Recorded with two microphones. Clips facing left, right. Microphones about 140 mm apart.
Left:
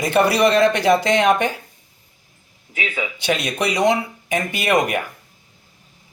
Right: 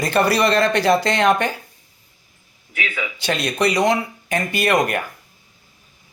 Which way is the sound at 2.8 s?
25° left (ahead or behind).